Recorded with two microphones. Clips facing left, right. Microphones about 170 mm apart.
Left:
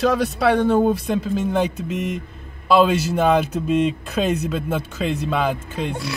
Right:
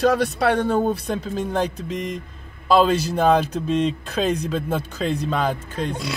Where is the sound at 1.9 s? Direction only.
10° left (ahead or behind).